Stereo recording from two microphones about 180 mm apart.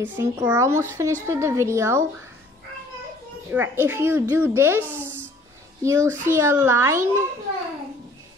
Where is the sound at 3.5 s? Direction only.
10° right (ahead or behind).